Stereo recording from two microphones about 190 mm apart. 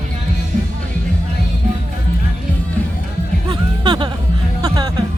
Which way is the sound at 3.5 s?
25° right (ahead or behind).